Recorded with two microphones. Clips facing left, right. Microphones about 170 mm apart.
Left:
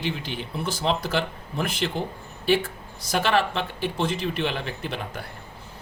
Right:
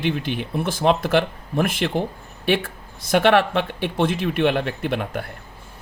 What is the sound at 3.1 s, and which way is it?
Speech, 60° right (ahead or behind).